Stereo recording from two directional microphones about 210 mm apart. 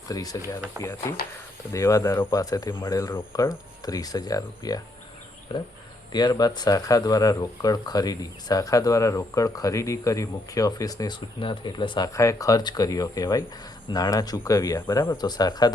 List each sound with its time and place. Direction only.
0.1 s speech: 15° left (ahead or behind)
6.1 s speech: 20° left (ahead or behind)